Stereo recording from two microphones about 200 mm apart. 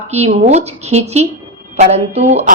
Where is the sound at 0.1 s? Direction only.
35° right (ahead or behind).